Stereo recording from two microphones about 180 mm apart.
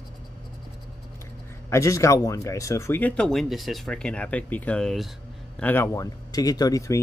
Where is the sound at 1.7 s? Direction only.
15° left (ahead or behind).